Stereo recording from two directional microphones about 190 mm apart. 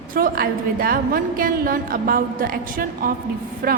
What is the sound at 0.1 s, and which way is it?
A woman's voice, 50° right (ahead or behind).